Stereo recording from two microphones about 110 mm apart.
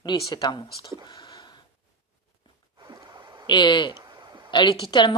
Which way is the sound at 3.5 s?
45° left (ahead or behind).